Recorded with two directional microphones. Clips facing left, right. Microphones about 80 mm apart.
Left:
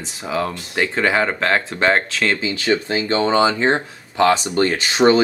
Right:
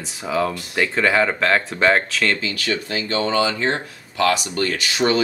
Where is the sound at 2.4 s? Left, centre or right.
Left.